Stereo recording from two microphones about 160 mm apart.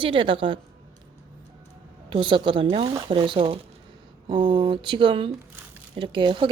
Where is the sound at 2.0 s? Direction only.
30° right (ahead or behind).